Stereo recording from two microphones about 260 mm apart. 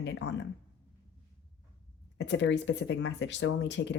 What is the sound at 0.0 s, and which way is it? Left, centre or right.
Speech, left.